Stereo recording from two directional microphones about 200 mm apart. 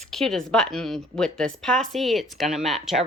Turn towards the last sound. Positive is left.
turn(degrees=0)  # may be behind; listen again after turning